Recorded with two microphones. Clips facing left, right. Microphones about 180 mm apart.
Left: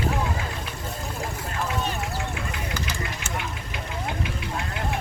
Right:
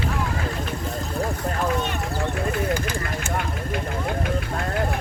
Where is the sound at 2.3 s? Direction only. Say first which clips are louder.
Right 8 dB; 50° right (ahead or behind).